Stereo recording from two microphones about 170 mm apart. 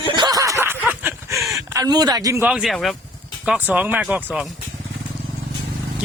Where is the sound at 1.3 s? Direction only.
Centre (ahead or behind).